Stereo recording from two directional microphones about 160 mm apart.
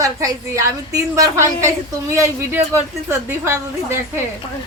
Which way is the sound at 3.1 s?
15° right (ahead or behind).